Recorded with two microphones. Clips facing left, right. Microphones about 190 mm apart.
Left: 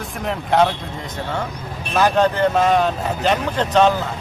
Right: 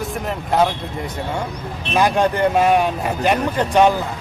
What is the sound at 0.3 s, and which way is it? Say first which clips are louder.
Speech: left 2 dB; 5° right (ahead or behind).